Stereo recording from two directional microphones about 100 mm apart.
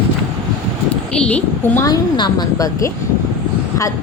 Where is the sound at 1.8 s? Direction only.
40° left (ahead or behind).